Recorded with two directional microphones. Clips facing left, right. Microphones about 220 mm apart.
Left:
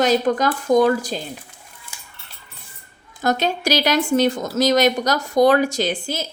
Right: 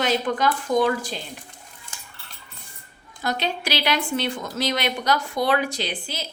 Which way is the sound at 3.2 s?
45° left (ahead or behind).